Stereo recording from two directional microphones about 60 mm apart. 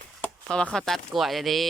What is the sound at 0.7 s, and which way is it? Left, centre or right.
Speech, centre.